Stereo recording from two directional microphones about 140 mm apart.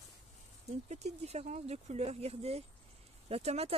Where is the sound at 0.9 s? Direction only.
50° right (ahead or behind).